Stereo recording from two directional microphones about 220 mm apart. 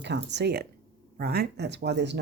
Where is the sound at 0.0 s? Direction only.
50° right (ahead or behind).